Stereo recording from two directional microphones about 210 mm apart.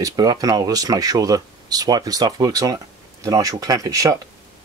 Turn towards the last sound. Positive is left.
turn(degrees=-15)  # may be behind; listen again after turning